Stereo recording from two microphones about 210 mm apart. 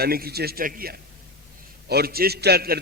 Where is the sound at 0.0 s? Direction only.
45° right (ahead or behind).